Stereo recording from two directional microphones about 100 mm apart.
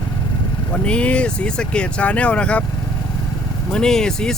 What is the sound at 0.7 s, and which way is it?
Speech, 10° left (ahead or behind).